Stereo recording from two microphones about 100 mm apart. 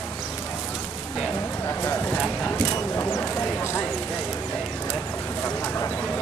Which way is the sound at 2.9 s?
30° left (ahead or behind).